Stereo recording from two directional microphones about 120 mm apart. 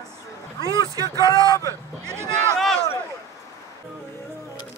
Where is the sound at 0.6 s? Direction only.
30° left (ahead or behind).